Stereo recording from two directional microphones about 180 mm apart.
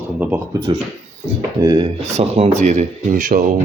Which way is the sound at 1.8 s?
35° right (ahead or behind).